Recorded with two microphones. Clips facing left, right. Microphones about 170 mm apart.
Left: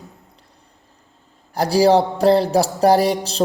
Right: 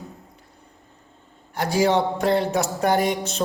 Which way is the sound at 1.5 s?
35° left (ahead or behind).